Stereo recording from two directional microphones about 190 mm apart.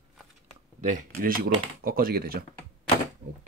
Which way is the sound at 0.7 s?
40° right (ahead or behind).